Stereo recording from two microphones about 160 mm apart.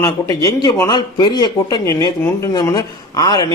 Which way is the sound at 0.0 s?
20° left (ahead or behind).